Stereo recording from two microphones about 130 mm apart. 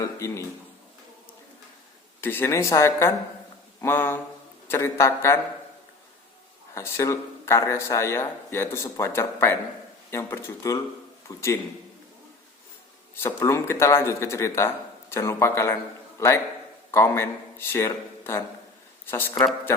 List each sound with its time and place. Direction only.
0.0 s speech: 25° left (ahead or behind)
2.2 s speech: 15° left (ahead or behind)
6.7 s speech: 20° left (ahead or behind)
13.1 s a man's voice: 20° left (ahead or behind)